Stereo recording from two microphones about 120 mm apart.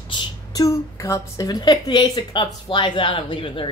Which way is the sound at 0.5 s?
25° left (ahead or behind).